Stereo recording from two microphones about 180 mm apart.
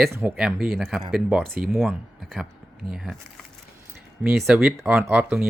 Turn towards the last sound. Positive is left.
turn(degrees=-5)  # may be behind; listen again after turning